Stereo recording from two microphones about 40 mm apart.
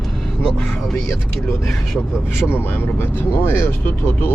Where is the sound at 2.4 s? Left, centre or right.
Left.